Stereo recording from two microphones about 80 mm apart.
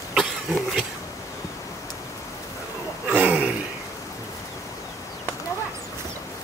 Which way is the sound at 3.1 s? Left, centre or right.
Right.